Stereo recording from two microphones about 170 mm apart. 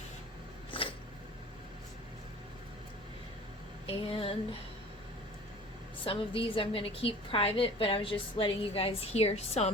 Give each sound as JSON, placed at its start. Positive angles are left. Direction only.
{"t": 0.7, "sound": "a sound", "side_deg": 30}
{"t": 3.8, "sound": "a woman's voice", "side_deg": 35}
{"t": 6.1, "sound": "a woman's voice", "side_deg": 30}